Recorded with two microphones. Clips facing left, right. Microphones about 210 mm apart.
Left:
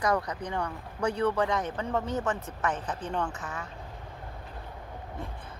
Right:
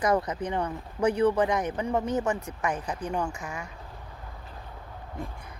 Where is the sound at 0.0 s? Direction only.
20° right (ahead or behind).